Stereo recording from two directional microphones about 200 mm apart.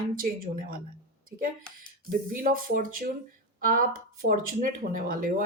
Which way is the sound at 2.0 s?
45° right (ahead or behind).